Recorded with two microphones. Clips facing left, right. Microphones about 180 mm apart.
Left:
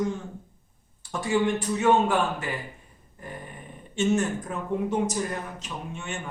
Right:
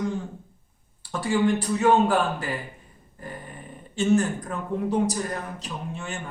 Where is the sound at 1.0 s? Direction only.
35° right (ahead or behind).